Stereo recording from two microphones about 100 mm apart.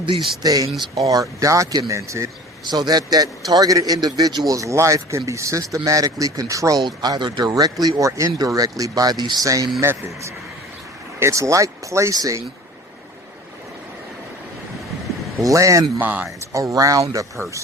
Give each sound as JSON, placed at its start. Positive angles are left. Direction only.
{"t": 0.0, "sound": "speech", "side_deg": -60}
{"t": 0.4, "sound": "speech", "side_deg": -40}
{"t": 2.6, "sound": "a man's voice", "side_deg": -45}
{"t": 4.5, "sound": "speech", "side_deg": -30}
{"t": 15.4, "sound": "speech", "side_deg": -30}
{"t": 16.0, "sound": "speech", "side_deg": -15}
{"t": 16.5, "sound": "speech", "side_deg": -30}